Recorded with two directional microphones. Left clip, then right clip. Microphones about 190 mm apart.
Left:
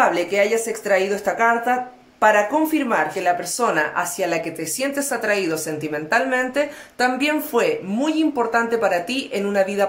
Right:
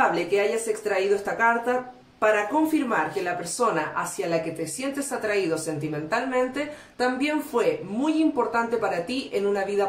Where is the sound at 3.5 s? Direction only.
50° left (ahead or behind).